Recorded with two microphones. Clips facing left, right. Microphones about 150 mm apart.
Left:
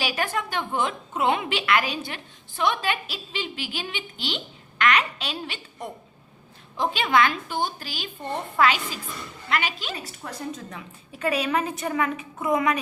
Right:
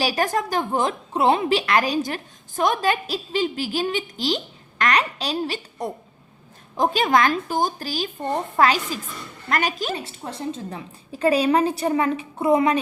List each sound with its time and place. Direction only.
0.0 s a woman's voice: 40° right (ahead or behind)
9.9 s a woman's voice: 25° right (ahead or behind)